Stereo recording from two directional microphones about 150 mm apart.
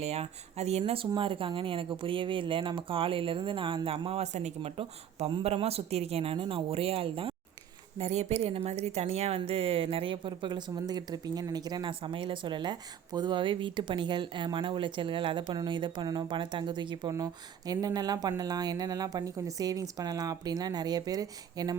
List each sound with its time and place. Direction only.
0.0 s a woman's voice: 45° right (ahead or behind); by 21.8 s 25° right (ahead or behind)